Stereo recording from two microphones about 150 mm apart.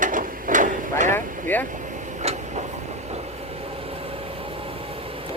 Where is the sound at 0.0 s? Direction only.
65° right (ahead or behind).